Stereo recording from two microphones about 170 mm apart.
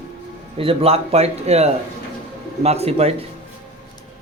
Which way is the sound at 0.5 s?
35° right (ahead or behind).